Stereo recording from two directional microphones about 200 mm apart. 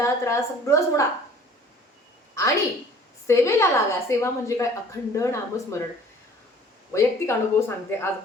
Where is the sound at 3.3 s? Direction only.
15° left (ahead or behind).